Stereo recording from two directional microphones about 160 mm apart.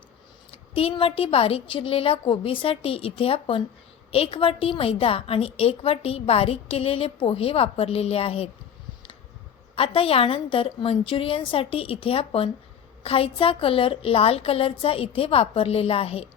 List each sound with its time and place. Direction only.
0.5 s a woman's voice: 35° left (ahead or behind)
9.7 s a woman's voice: 35° left (ahead or behind)